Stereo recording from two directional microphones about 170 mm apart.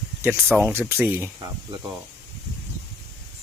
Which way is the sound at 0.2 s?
10° right (ahead or behind).